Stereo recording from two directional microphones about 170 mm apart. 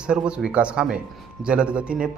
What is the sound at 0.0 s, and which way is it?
A man's voice, 5° right (ahead or behind).